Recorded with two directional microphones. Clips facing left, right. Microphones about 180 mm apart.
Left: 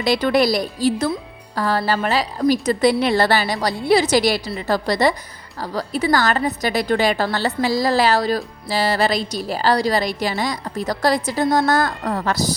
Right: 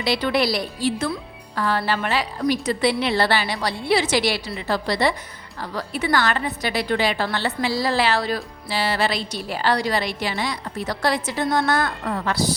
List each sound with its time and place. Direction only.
0.0 s a woman's voice: 45° left (ahead or behind)